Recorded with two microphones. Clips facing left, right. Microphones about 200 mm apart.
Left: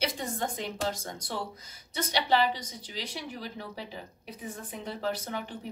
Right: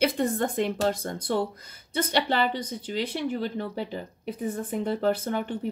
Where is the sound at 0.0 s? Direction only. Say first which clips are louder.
Right 8 dB; 55° right (ahead or behind).